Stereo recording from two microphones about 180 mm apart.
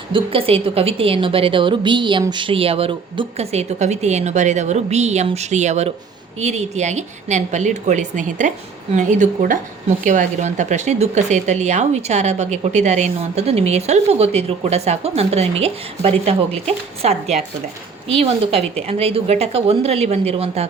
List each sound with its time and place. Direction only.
0.1 s a woman's voice: 30° right (ahead or behind)